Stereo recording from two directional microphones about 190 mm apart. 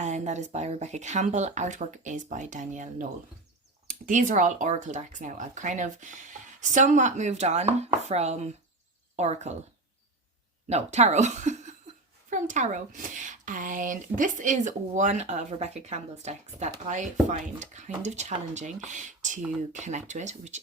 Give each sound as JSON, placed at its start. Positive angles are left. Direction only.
{"t": 0.0, "sound": "speech", "side_deg": -35}
{"t": 10.7, "sound": "speech", "side_deg": -35}